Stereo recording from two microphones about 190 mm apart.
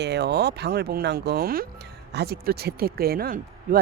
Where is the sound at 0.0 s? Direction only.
60° right (ahead or behind).